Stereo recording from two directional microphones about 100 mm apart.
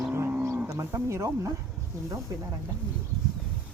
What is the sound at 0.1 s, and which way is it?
Livestock, 20° right (ahead or behind).